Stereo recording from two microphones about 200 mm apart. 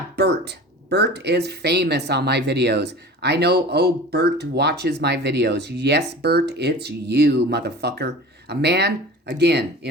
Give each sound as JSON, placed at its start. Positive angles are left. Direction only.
{"t": 0.2, "sound": "speech", "side_deg": -55}